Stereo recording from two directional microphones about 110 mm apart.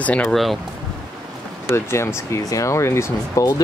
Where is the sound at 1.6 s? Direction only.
25° left (ahead or behind).